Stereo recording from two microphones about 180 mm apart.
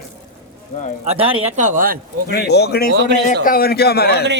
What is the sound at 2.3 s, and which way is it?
Speech, 65° left (ahead or behind).